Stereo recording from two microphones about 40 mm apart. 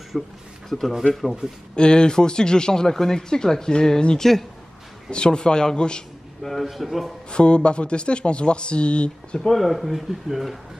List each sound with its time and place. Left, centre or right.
0.1 s speech: centre
1.8 s speech: left
5.1 s speech: left
6.4 s speech: centre
7.2 s speech: left
9.6 s speech: centre